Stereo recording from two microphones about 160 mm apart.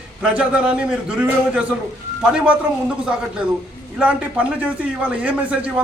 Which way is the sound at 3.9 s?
5° right (ahead or behind).